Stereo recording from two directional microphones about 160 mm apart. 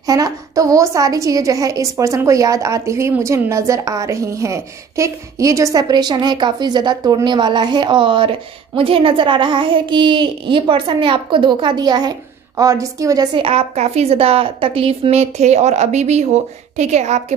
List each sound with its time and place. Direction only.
0.0 s a woman's voice: 20° right (ahead or behind); by 17.4 s 45° right (ahead or behind)